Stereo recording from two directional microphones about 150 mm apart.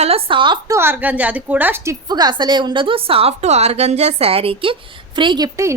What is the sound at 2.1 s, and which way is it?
A woman's voice, 30° right (ahead or behind).